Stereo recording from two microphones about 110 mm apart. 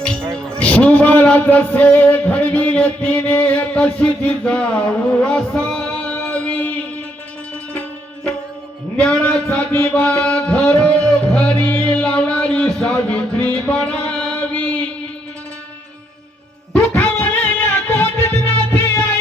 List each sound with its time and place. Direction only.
0.0 s music: 5° left (ahead or behind)
0.3 s a man's voice: 10° left (ahead or behind)
5.2 s a sound: 10° left (ahead or behind)
7.7 s music: 10° left (ahead or behind)
16.7 s music: 15° left (ahead or behind)